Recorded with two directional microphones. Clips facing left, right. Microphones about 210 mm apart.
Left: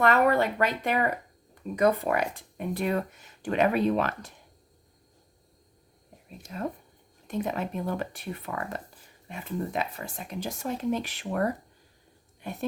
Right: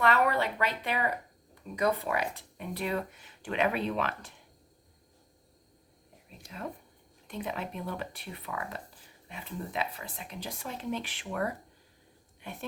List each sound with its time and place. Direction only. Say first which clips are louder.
0.0 s speech: left 5 dB; 45° left (ahead or behind)
6.5 s speech: left 6 dB; 45° left (ahead or behind)